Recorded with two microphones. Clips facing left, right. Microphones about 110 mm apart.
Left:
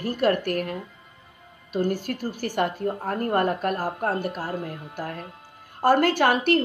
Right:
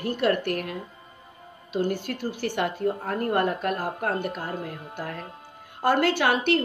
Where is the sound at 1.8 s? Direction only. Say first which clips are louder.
Left 1 dB; 40° left (ahead or behind).